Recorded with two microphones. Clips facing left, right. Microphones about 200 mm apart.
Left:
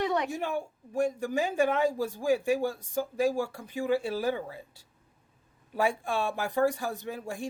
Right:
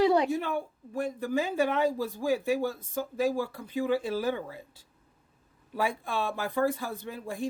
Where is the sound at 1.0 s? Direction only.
15° left (ahead or behind).